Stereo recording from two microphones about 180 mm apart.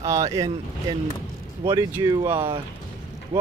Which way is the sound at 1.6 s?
15° right (ahead or behind).